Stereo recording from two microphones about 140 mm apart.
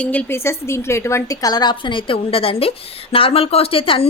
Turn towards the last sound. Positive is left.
turn(degrees=40)  # may be behind; listen again after turning